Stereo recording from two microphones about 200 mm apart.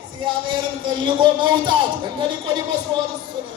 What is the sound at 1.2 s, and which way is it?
Speech, 25° right (ahead or behind).